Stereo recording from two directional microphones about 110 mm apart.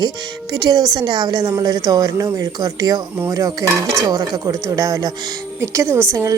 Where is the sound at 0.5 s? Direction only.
35° right (ahead or behind).